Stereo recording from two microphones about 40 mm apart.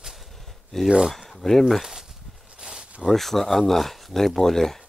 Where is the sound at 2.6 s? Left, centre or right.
Centre.